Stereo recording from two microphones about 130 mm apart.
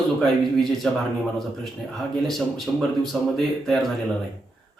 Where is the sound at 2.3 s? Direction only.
Centre (ahead or behind).